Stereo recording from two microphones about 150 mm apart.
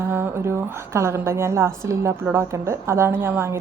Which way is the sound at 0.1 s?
15° right (ahead or behind).